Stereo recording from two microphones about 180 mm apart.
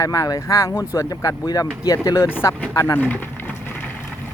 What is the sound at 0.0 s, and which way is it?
Speech, 20° left (ahead or behind).